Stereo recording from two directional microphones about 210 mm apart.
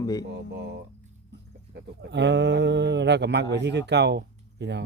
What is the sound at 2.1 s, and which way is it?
Speech, 55° right (ahead or behind).